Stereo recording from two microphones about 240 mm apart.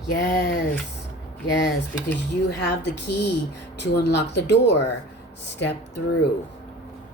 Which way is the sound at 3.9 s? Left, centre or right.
Left.